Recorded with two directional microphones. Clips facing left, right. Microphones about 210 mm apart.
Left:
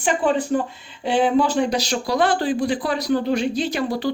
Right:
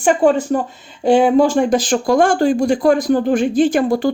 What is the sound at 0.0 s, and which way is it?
Speech, 45° right (ahead or behind).